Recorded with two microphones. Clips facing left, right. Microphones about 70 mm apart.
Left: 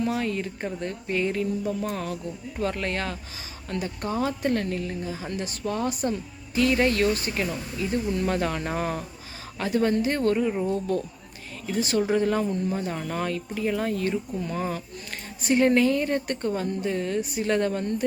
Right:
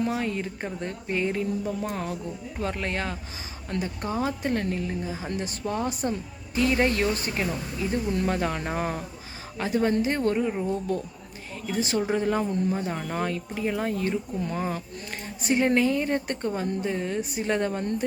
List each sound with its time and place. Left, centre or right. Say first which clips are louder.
0.0 s speech: left 1 dB; right